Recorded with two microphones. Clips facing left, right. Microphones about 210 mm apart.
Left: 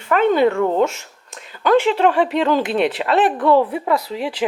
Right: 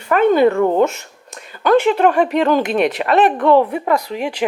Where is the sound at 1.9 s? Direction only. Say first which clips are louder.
Right 2 dB; 50° right (ahead or behind).